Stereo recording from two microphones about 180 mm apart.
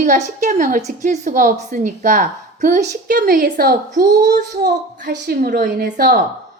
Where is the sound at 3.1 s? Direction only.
55° right (ahead or behind).